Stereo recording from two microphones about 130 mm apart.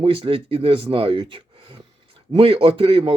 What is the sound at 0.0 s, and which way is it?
Speech, 45° right (ahead or behind).